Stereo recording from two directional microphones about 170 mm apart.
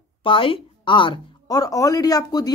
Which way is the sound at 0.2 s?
30° left (ahead or behind).